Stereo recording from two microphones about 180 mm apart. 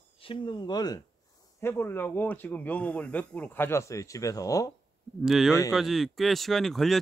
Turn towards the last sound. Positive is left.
turn(degrees=0)  # may be behind; listen again after turning